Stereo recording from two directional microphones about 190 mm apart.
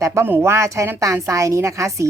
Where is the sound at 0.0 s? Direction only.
15° right (ahead or behind).